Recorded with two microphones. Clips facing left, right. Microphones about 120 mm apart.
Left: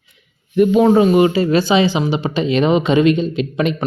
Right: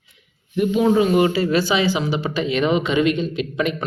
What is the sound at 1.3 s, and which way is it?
Speech, 25° left (ahead or behind).